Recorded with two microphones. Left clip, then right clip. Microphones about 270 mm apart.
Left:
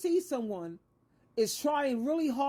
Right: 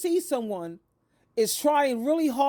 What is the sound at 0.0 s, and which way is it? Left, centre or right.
A woman's voice, right.